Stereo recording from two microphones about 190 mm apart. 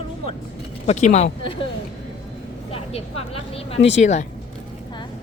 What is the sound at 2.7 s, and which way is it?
Speech, 30° left (ahead or behind).